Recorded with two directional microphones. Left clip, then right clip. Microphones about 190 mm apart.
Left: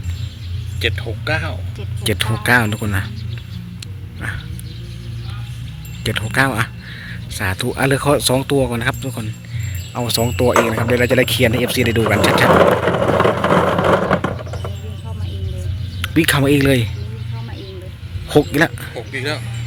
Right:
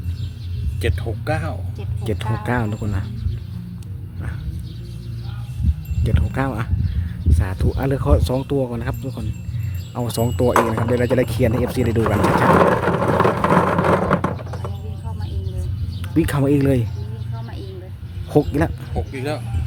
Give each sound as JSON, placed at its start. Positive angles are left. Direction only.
{"t": 0.8, "sound": "speech", "side_deg": -65}
{"t": 2.0, "sound": "speech", "side_deg": -5}
{"t": 6.0, "sound": "speech", "side_deg": 0}
{"t": 10.1, "sound": "speech", "side_deg": -15}
{"t": 12.5, "sound": "vehicle", "side_deg": -5}
{"t": 13.6, "sound": "a sound", "side_deg": 0}
{"t": 16.0, "sound": "speech", "side_deg": -10}
{"t": 18.3, "sound": "speech", "side_deg": -10}
{"t": 18.9, "sound": "speech", "side_deg": -60}